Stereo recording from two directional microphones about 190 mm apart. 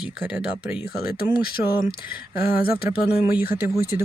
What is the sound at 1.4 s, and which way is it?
Speech, 50° left (ahead or behind).